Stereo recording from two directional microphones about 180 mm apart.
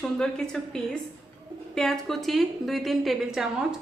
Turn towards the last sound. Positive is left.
turn(degrees=-5)  # may be behind; listen again after turning